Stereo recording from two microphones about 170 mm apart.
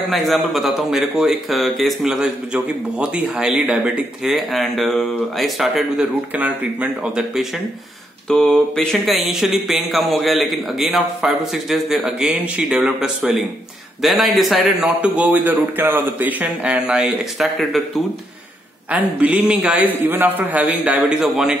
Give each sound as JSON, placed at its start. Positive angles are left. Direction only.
{"t": 0.1, "sound": "a man's voice", "side_deg": 0}